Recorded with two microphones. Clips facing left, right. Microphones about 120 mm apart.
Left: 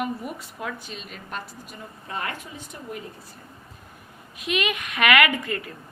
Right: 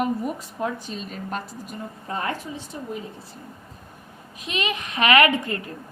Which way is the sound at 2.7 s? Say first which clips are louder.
Right 4 dB; 20° right (ahead or behind).